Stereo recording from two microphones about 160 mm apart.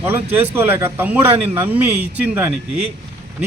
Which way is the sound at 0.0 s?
15° right (ahead or behind).